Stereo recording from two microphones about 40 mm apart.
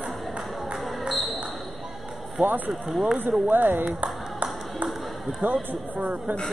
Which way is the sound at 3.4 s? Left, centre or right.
Right.